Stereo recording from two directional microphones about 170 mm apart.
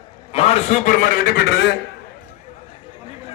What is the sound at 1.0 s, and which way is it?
Speech, 55° left (ahead or behind).